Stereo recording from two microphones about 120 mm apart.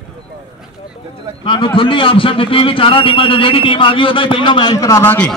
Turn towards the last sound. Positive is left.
turn(degrees=15)  # may be behind; listen again after turning